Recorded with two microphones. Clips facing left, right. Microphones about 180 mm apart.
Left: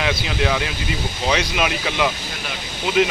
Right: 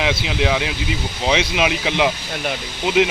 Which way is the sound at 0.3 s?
15° right (ahead or behind).